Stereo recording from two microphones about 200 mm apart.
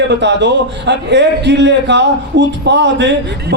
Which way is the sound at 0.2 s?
60° right (ahead or behind).